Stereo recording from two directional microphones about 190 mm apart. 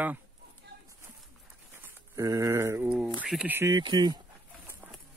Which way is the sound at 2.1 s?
15° right (ahead or behind).